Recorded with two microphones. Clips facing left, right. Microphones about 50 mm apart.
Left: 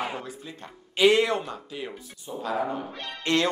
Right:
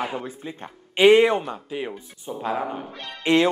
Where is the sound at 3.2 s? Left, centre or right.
Centre.